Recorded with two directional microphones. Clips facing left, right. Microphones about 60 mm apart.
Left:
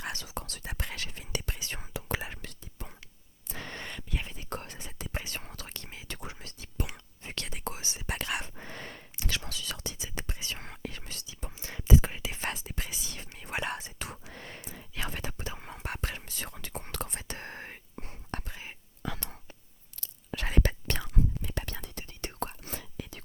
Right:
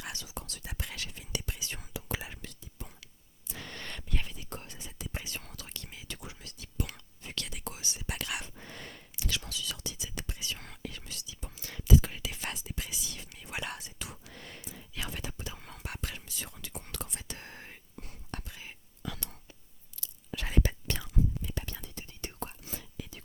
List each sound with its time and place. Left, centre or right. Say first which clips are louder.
0.0 s speech: left 4 dB; left
1.9 s whispering: left 4 dB; left
3.0 s a sound: left 2 dB; left
3.8 s whispering: left 1 dB; centre
4.4 s whispering: left 5 dB; left
11.5 s whispering: even; left
15.5 s whispering: left 4 dB; left
17.9 s whispering: left 4 dB; left
20.0 s whispering: left 3 dB; left